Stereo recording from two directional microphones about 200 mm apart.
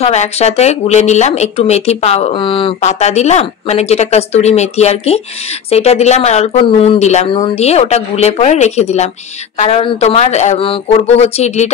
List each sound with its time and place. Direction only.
0.0 s speech: 35° left (ahead or behind)